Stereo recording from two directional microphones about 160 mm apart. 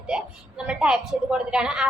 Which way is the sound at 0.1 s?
5° right (ahead or behind).